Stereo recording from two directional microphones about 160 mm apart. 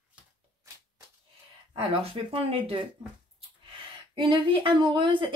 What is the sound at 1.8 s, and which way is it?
A woman's voice, 35° right (ahead or behind).